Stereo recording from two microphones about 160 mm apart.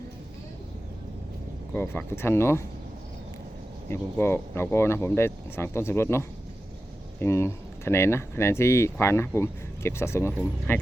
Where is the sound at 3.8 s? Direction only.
15° left (ahead or behind).